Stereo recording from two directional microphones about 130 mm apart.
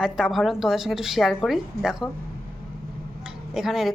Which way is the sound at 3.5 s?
5° right (ahead or behind).